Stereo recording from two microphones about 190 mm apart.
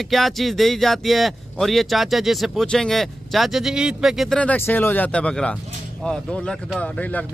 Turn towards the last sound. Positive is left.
turn(degrees=5)  # may be behind; listen again after turning